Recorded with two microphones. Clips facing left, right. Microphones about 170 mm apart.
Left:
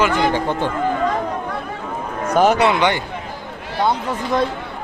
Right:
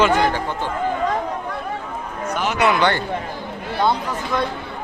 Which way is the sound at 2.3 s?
45° left (ahead or behind).